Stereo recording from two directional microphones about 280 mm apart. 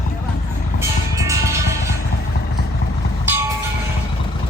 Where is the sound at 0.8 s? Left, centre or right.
Centre.